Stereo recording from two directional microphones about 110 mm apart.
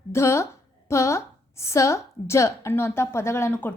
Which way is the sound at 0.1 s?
25° left (ahead or behind).